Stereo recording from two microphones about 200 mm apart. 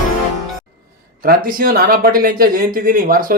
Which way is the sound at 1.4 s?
45° right (ahead or behind).